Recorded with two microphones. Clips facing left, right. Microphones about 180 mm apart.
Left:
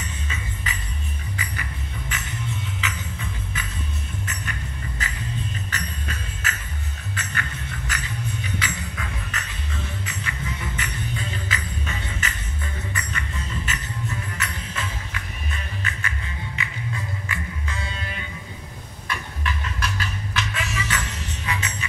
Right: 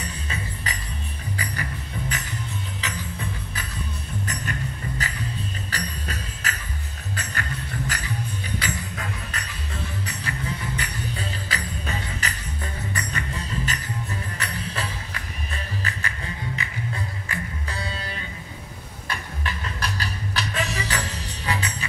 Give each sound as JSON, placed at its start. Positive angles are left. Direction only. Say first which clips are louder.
{"t": 0.0, "sound": "music", "louder": "right 1 dB", "side_deg": -35}